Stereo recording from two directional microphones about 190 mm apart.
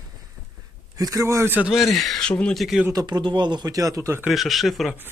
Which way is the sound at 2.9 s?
20° right (ahead or behind).